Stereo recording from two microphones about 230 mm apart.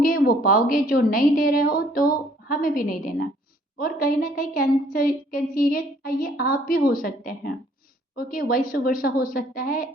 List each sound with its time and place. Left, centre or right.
0.0 s a woman's voice: left